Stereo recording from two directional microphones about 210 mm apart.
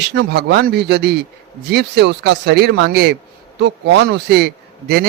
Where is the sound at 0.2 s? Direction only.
50° right (ahead or behind).